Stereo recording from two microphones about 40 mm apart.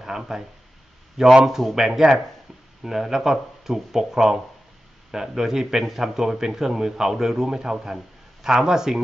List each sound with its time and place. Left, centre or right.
0.0 s speech: centre